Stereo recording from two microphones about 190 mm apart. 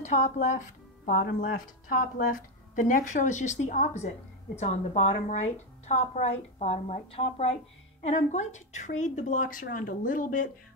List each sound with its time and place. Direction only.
0.0 s speech: 40° left (ahead or behind)